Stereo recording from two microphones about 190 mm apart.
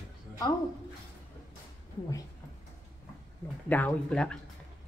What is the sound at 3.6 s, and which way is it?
Speech, 10° left (ahead or behind).